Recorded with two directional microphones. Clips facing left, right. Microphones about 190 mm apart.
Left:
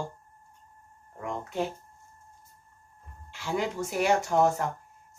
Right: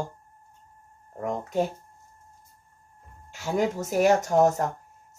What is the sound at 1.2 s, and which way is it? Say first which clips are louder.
Speech: right 5 dB; 40° right (ahead or behind).